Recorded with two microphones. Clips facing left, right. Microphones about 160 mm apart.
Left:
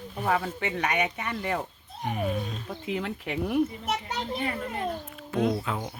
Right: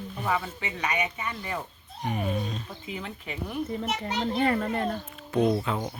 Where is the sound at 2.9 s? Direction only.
70° left (ahead or behind).